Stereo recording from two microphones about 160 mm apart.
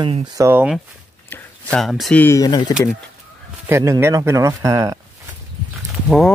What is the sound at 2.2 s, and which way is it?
Speech, 20° left (ahead or behind).